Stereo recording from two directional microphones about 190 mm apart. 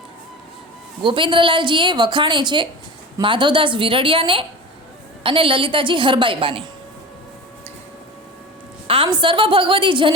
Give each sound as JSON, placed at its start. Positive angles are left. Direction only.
{"t": 1.0, "sound": "a woman's voice", "side_deg": -25}
{"t": 8.9, "sound": "a woman's voice", "side_deg": -25}